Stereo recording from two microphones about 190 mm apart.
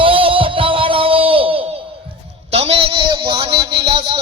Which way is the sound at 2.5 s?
35° right (ahead or behind).